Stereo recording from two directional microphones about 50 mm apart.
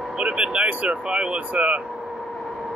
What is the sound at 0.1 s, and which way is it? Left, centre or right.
Speech, right.